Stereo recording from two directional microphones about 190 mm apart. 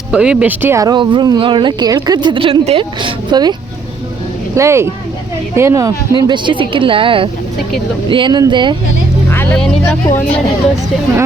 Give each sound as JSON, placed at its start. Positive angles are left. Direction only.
{"t": 0.1, "sound": "speech", "side_deg": -5}
{"t": 4.5, "sound": "speech", "side_deg": -15}
{"t": 9.3, "sound": "speech", "side_deg": 10}